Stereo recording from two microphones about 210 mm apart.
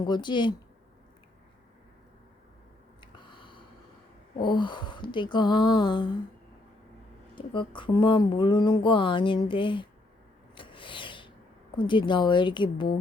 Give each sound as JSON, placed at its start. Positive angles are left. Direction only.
{"t": 0.0, "sound": "speech", "side_deg": 20}
{"t": 3.0, "sound": "a sound", "side_deg": 20}
{"t": 4.4, "sound": "speech", "side_deg": 20}
{"t": 7.3, "sound": "speech", "side_deg": 20}
{"t": 10.5, "sound": "rub", "side_deg": 25}
{"t": 11.8, "sound": "speech", "side_deg": 20}